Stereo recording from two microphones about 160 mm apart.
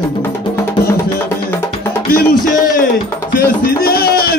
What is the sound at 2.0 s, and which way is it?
Music, 70° left (ahead or behind).